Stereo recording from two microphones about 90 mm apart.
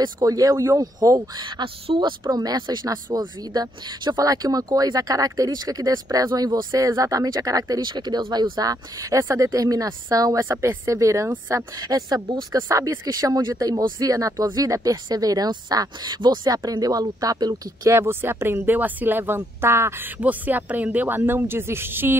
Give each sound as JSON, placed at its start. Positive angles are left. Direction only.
{"t": 0.2, "sound": "speech", "side_deg": -40}
{"t": 1.6, "sound": "speech", "side_deg": -65}
{"t": 10.4, "sound": "speech", "side_deg": -30}
{"t": 17.8, "sound": "speech", "side_deg": -25}